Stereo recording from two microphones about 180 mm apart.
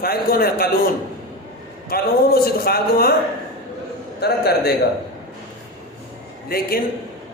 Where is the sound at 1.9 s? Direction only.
60° left (ahead or behind).